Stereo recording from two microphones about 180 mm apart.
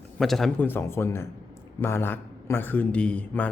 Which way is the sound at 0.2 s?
Centre (ahead or behind).